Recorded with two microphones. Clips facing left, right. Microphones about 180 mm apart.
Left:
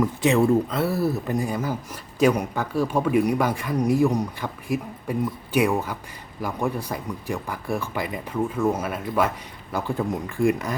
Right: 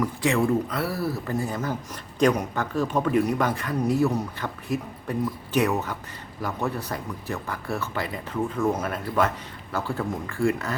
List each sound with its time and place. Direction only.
0.0 s speech: 20° left (ahead or behind)